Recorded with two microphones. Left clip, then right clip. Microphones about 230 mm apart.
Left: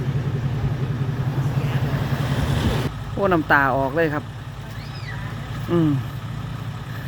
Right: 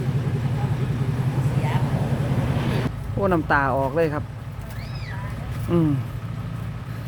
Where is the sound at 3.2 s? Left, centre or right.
Centre.